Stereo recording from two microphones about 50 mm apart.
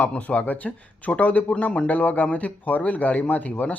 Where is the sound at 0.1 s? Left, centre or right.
Left.